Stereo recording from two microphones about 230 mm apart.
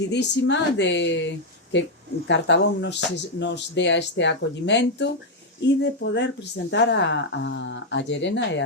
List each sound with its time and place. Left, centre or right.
0.1 s speech: left